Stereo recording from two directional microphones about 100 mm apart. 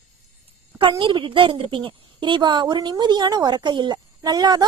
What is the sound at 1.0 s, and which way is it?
A woman's voice, 55° right (ahead or behind).